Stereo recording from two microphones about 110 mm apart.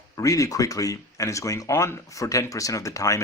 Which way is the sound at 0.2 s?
30° left (ahead or behind).